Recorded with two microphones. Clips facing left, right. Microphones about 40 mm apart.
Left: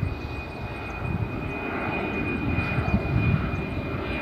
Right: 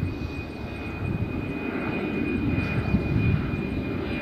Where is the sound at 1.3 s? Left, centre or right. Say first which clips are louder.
Right 1 dB; centre.